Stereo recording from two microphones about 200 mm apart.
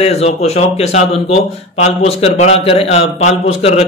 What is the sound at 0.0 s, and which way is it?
A man's voice, 30° left (ahead or behind).